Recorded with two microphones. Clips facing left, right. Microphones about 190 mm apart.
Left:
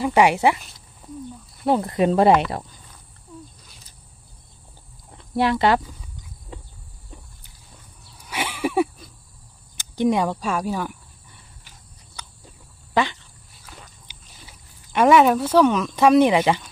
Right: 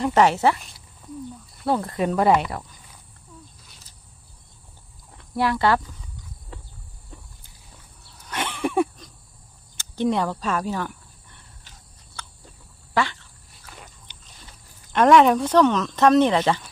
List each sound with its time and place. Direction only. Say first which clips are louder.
0.0 s a woman's voice: left 1 dB; 10° left (ahead or behind)
0.6 s speech: even; centre (ahead or behind)
1.6 s speech: left 4 dB; 20° left (ahead or behind)
5.1 s speech: left 3 dB; 25° left (ahead or behind)
6.5 s a sound: left 3 dB; 20° left (ahead or behind)
8.2 s a sound: left 1 dB; 10° left (ahead or behind)
9.8 s speech: left 2 dB; 15° left (ahead or behind)
12.9 s speech: left 2 dB; 20° left (ahead or behind)
13.5 s chewing: even; 5° left (ahead or behind)